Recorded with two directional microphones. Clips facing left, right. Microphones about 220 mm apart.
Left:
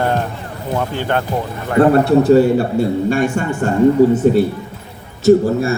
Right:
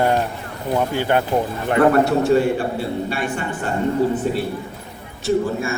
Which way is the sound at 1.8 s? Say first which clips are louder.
Left 5 dB; 30° left (ahead or behind).